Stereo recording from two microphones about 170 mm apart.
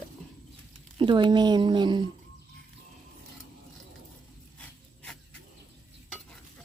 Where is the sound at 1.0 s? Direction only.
30° right (ahead or behind).